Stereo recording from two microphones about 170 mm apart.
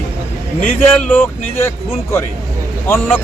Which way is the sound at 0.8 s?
10° left (ahead or behind).